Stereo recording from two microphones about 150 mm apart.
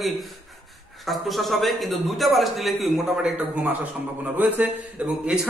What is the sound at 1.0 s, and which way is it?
A man's voice, centre (ahead or behind).